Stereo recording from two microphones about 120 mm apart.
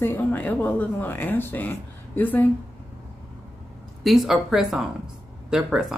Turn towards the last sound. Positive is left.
turn(degrees=-5)  # may be behind; listen again after turning